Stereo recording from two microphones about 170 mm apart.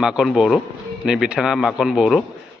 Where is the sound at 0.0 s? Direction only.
5° right (ahead or behind).